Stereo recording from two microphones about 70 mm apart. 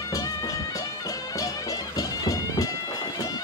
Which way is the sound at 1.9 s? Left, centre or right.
Left.